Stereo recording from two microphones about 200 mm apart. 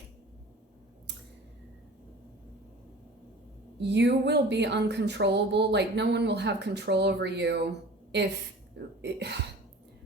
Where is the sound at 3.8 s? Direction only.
60° right (ahead or behind).